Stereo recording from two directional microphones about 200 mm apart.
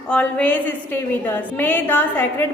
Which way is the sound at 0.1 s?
5° left (ahead or behind).